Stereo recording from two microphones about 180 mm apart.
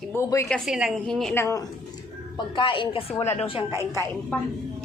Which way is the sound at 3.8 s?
15° left (ahead or behind).